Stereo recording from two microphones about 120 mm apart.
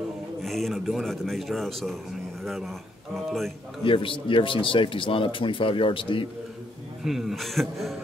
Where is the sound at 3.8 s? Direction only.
45° left (ahead or behind).